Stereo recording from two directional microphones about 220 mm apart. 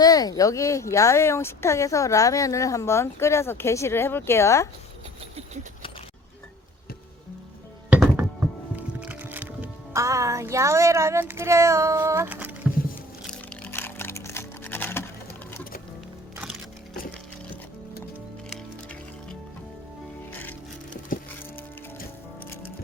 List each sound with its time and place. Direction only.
0.0 s speech: 15° left (ahead or behind)
7.9 s music: 10° right (ahead or behind)
13.3 s typing: 5° left (ahead or behind)
16.9 s sewing machine: 40° left (ahead or behind)
20.3 s music: 10° left (ahead or behind)